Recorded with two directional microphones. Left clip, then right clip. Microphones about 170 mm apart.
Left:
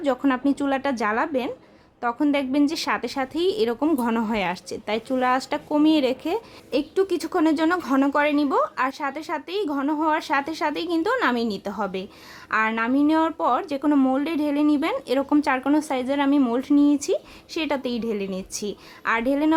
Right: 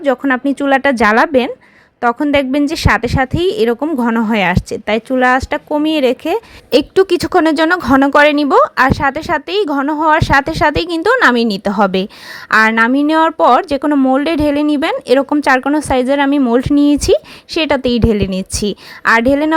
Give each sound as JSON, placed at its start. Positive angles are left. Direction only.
{"t": 0.0, "sound": "speech", "side_deg": -25}
{"t": 6.7, "sound": "a woman's voice", "side_deg": -45}